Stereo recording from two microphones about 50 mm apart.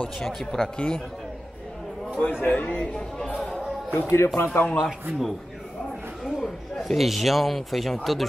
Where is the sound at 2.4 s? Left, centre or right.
Left.